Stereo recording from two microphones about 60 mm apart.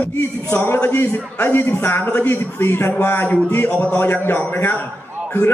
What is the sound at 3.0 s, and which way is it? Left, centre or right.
A man's voice, left.